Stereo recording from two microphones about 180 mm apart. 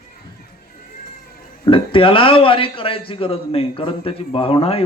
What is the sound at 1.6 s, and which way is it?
A man's voice, 30° left (ahead or behind).